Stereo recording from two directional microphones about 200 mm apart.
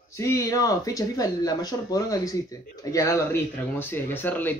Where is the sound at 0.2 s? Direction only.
15° left (ahead or behind).